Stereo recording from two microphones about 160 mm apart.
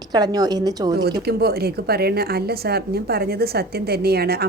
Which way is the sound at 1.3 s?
80° right.